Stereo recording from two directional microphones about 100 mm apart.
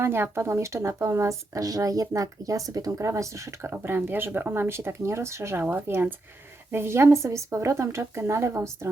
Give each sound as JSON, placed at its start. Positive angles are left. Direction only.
{"t": 0.0, "sound": "speech", "side_deg": -25}